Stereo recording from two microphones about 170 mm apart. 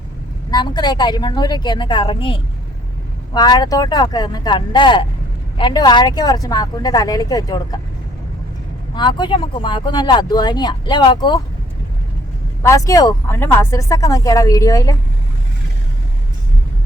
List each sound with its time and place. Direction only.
0.5 s speech: 25° left (ahead or behind)
9.0 s speech: 25° left (ahead or behind)
12.6 s speech: 20° left (ahead or behind)